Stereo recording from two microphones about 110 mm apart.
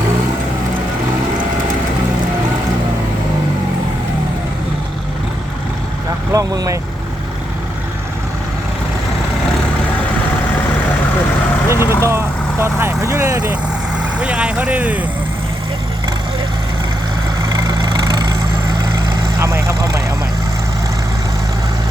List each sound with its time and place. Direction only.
6.3 s speech: 30° right (ahead or behind)
11.7 s vehicle: 20° right (ahead or behind)
17.5 s vehicle: 30° right (ahead or behind)
19.4 s vehicle: 25° right (ahead or behind)